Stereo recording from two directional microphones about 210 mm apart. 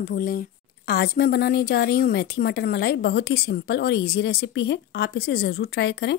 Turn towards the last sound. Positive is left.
turn(degrees=55)  # may be behind; listen again after turning